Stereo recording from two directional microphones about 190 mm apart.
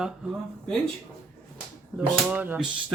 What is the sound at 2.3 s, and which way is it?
Speech, 10° right (ahead or behind).